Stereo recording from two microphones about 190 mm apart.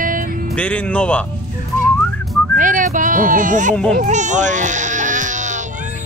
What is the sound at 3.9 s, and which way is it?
Baby cry, 40° right (ahead or behind).